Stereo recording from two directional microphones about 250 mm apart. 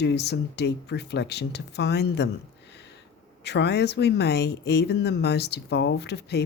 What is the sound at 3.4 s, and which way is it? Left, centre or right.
A woman's voice, left.